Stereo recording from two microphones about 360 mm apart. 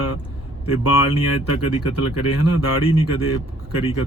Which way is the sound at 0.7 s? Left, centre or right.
Left.